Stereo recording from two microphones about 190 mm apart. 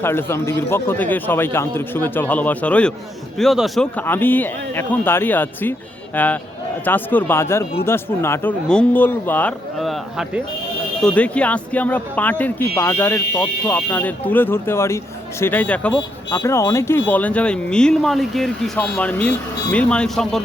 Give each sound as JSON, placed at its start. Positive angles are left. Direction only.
{"t": 0.0, "sound": "speech", "side_deg": 10}
{"t": 16.0, "sound": "speech", "side_deg": 20}